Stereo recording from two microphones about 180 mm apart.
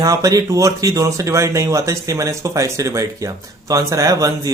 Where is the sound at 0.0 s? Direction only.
20° right (ahead or behind).